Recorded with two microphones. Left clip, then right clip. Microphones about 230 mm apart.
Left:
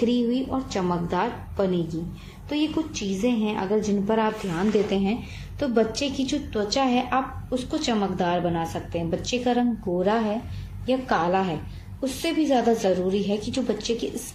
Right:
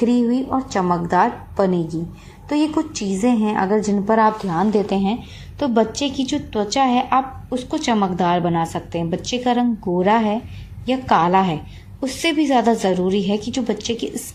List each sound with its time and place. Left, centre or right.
0.0 s a woman's voice: right